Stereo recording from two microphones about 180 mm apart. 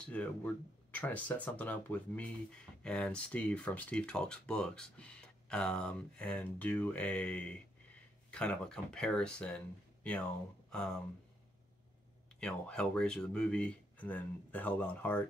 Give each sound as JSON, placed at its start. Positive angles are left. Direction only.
{"t": 0.0, "sound": "speech", "side_deg": 5}
{"t": 10.7, "sound": "speech", "side_deg": 5}
{"t": 12.4, "sound": "speech", "side_deg": 5}